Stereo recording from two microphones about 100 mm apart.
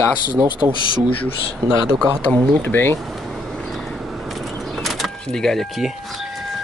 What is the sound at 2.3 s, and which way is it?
Speech, 20° left (ahead or behind).